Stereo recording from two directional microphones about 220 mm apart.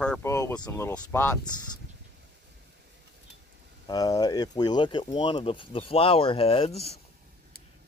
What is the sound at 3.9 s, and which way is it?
Speech, 15° left (ahead or behind).